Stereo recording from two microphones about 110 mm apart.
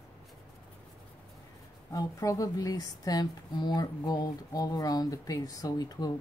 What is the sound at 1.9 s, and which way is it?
Speech, 30° left (ahead or behind).